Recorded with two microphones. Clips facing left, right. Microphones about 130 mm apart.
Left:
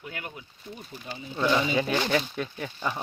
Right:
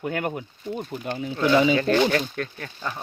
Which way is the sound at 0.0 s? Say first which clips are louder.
Right 12 dB; 55° right (ahead or behind).